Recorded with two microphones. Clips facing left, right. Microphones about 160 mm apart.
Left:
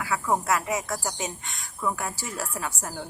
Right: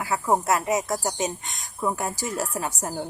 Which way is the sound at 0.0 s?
35° right (ahead or behind).